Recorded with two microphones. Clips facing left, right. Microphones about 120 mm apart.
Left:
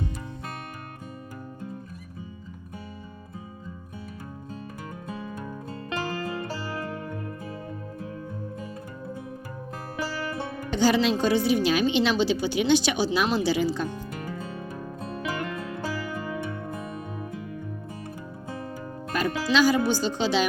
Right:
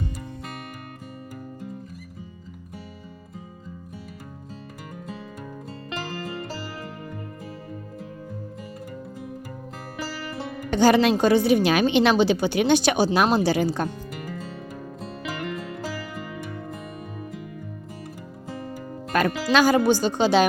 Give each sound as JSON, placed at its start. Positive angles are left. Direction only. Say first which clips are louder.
{"t": 10.7, "sound": "speech", "louder": "right 4 dB", "side_deg": -55}
{"t": 19.1, "sound": "speech", "louder": "right 3 dB", "side_deg": -55}